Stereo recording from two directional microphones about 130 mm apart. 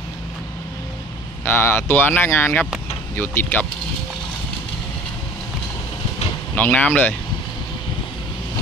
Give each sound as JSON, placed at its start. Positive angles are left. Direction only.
{"t": 1.4, "sound": "speech", "side_deg": 15}
{"t": 6.5, "sound": "speech", "side_deg": 10}